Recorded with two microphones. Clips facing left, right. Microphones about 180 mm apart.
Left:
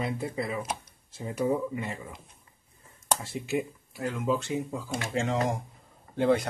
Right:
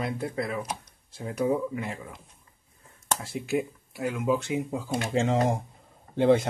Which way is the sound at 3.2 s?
Centre (ahead or behind).